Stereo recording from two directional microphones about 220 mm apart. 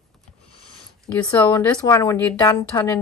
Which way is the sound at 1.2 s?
10° left (ahead or behind).